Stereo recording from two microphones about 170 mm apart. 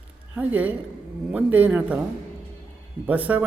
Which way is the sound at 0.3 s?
10° right (ahead or behind).